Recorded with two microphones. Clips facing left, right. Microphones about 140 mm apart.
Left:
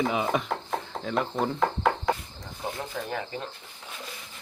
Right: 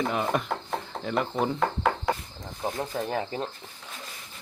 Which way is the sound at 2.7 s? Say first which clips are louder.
Right 5 dB; 35° right (ahead or behind).